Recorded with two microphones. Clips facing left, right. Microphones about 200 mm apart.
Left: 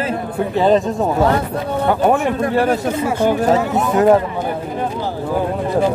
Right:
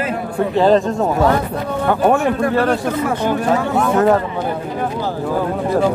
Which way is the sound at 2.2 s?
20° left (ahead or behind).